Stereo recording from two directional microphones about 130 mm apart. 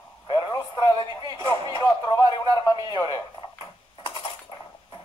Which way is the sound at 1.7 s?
35° left (ahead or behind).